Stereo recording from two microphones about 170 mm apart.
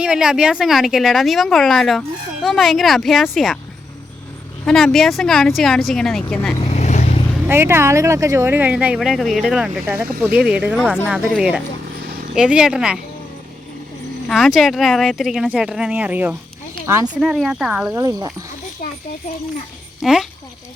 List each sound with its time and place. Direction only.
0.0 s a woman's voice: 5° right (ahead or behind)
4.6 s a woman's voice: centre (ahead or behind)
6.6 s vehicle: 40° left (ahead or behind)
7.4 s a woman's voice: 15° right (ahead or behind)
14.3 s a woman's voice: centre (ahead or behind); by 17.1 s 15° right (ahead or behind)
17.2 s a woman's voice: centre (ahead or behind)
17.9 s speech: 20° right (ahead or behind)
20.0 s a child's voice: centre (ahead or behind)